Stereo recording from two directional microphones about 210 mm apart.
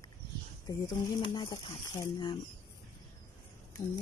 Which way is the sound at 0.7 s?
15° left (ahead or behind).